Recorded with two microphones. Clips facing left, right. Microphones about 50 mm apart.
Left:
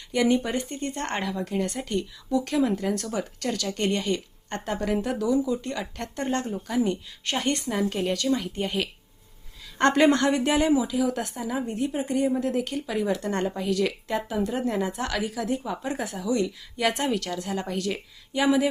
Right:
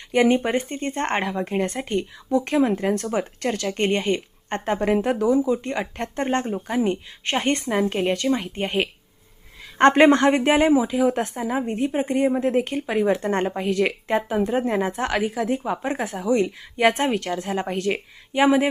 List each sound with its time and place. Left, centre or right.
0.1 s speech: right